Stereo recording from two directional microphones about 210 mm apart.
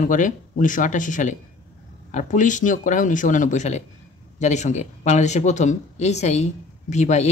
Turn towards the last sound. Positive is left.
turn(degrees=35)  # may be behind; listen again after turning